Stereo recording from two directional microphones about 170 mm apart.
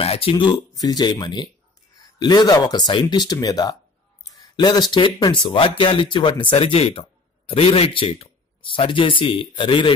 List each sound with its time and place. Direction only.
0.0 s speech: 35° left (ahead or behind)